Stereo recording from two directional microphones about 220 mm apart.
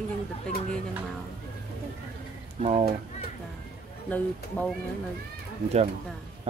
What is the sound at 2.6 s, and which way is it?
Speech, 30° right (ahead or behind).